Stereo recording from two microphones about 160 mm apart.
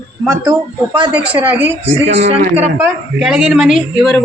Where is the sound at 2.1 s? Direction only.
40° right (ahead or behind).